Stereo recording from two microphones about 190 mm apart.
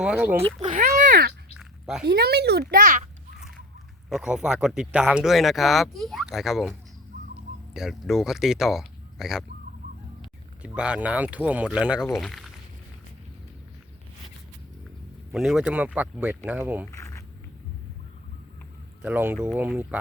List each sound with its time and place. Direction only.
0.0 s speech: 5° right (ahead or behind)
0.6 s a sound: 40° right (ahead or behind)
1.5 s a sound: centre (ahead or behind)
2.0 s speech: 55° right (ahead or behind)
4.1 s speech: 5° right (ahead or behind)
10.6 s speech: 5° right (ahead or behind)
15.3 s speech: centre (ahead or behind)
16.9 s a sound: 15° left (ahead or behind)
19.0 s speech: 10° right (ahead or behind)